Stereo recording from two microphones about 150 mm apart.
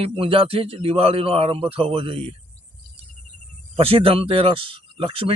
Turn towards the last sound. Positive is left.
turn(degrees=-35)  # may be behind; listen again after turning